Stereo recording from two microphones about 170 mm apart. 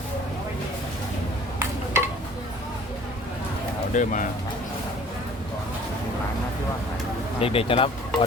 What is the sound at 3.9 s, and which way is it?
Speech, 50° left (ahead or behind).